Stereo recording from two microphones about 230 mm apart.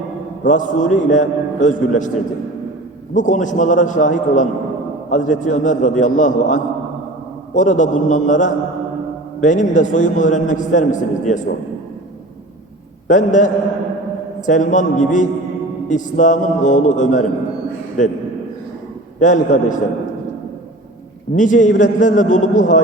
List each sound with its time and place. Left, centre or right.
0.4 s a man's voice: left
3.2 s a man's voice: left
13.1 s a man's voice: left
19.2 s a man's voice: left
21.3 s a man's voice: left